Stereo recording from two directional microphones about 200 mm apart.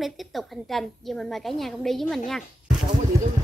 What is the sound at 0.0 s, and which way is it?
A woman's voice, centre (ahead or behind).